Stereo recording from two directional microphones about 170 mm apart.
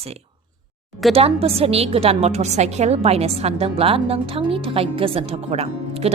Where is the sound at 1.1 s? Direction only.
35° right (ahead or behind).